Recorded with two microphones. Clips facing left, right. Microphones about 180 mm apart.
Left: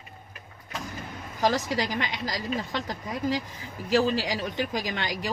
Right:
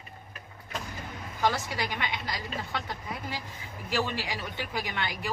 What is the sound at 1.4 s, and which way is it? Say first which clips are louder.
Speech: left 4 dB; 35° left (ahead or behind).